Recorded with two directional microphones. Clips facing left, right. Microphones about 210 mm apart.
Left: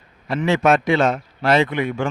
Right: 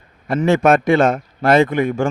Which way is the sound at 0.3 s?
50° right (ahead or behind).